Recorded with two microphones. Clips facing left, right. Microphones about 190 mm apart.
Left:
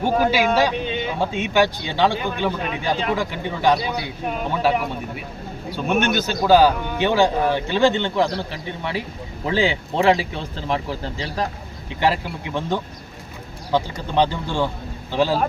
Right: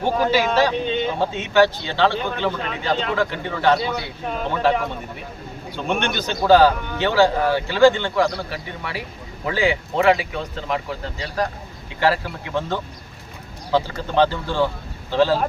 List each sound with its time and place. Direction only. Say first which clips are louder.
0.0 s a man's voice: left 1 dB; 10° left (ahead or behind); by 11.4 s 30° left (ahead or behind)
11.9 s speech: right 1 dB; 20° left (ahead or behind)